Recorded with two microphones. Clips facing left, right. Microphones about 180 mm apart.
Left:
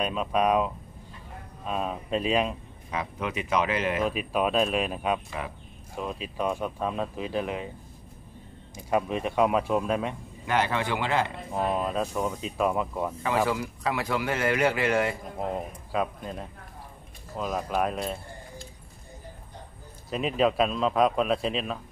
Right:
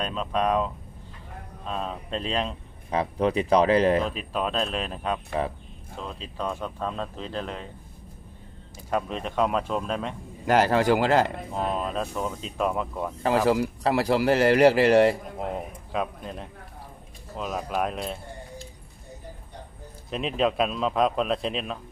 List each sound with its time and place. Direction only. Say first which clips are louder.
0.0 s speech: left 1 dB; 10° left (ahead or behind)
1.7 s speech: left 2 dB; 10° left (ahead or behind)
2.9 s speech: right 8 dB; 35° right (ahead or behind)
4.0 s speech: left 2 dB; 10° left (ahead or behind)
8.7 s speech: left 2 dB; 10° left (ahead or behind)
10.4 s speech: right 6 dB; 40° right (ahead or behind)
11.5 s speech: left 3 dB; 5° left (ahead or behind)
13.5 s speech: right 6 dB; 40° right (ahead or behind)
15.3 s speech: even; centre (ahead or behind)
20.1 s speech: left 1 dB; 5° left (ahead or behind)